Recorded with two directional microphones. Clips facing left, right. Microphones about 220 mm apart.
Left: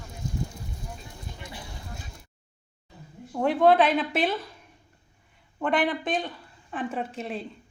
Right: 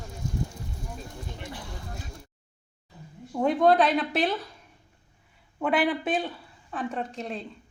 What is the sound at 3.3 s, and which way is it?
A woman's voice, centre (ahead or behind).